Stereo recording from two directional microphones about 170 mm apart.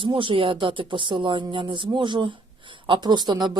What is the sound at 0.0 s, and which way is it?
Speech, 30° right (ahead or behind).